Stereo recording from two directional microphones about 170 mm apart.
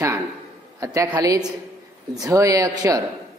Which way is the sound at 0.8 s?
20° right (ahead or behind).